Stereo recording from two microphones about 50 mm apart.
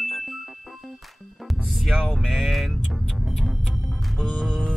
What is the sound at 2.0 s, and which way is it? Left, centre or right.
Speech, centre.